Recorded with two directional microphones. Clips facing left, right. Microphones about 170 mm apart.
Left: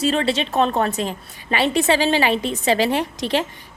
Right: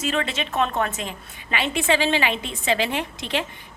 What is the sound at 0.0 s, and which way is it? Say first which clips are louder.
A woman's voice: left 6 dB; 35° left (ahead or behind).